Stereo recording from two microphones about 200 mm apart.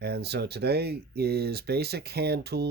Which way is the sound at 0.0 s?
55° right (ahead or behind).